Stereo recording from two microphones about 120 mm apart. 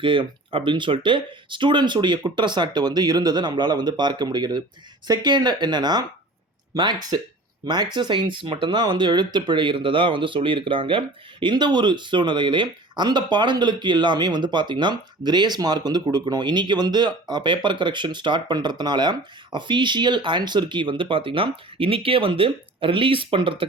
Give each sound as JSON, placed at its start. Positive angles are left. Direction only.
{"t": 0.0, "sound": "speech", "side_deg": -45}